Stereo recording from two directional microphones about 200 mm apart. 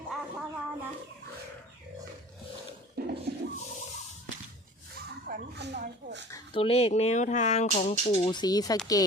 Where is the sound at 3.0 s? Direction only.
50° right (ahead or behind).